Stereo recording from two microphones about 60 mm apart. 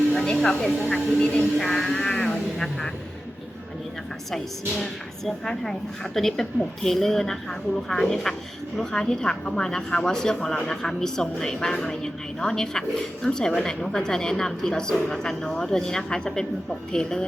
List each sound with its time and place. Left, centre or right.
0.1 s a sound: centre
0.3 s a woman's voice: centre
0.9 s a woman's voice: centre
1.5 s speech: centre
4.8 s a woman's voice: centre